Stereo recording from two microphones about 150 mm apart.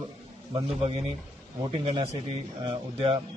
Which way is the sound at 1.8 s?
35° right (ahead or behind).